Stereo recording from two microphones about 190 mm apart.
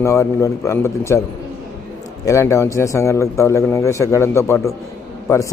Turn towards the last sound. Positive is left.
turn(degrees=15)  # may be behind; listen again after turning